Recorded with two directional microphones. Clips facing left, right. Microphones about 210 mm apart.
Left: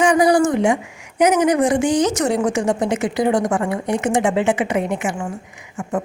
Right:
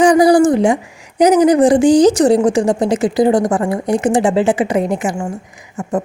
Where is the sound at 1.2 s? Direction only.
35° right (ahead or behind).